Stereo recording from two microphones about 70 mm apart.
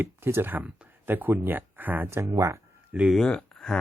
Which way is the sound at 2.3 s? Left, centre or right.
Right.